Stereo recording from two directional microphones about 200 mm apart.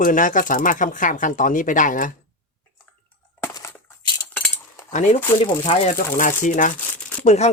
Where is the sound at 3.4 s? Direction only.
15° left (ahead or behind).